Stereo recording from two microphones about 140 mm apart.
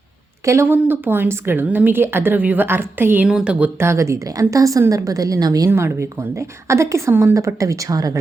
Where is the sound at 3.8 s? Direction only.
20° right (ahead or behind).